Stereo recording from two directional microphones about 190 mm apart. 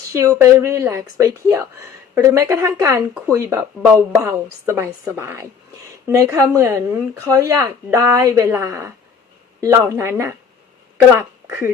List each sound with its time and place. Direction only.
0.3 s speech: 15° right (ahead or behind)
11.4 s speech: 10° right (ahead or behind)